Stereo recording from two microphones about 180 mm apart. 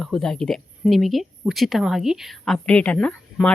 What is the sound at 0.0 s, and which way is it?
Speech, 5° left (ahead or behind).